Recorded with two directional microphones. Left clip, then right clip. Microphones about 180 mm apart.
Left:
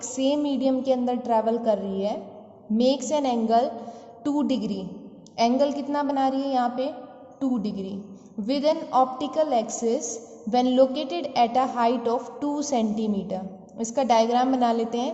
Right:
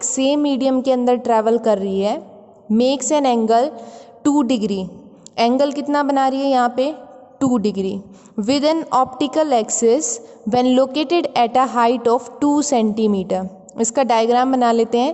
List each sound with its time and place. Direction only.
0.0 s a woman's voice: 50° right (ahead or behind)